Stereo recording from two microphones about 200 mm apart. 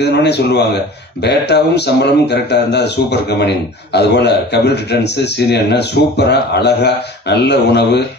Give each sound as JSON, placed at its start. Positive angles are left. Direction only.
{"t": 0.0, "sound": "speech", "side_deg": 55}